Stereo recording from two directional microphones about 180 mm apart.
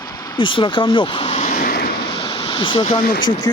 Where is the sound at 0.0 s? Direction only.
20° left (ahead or behind); by 1.9 s 50° left (ahead or behind).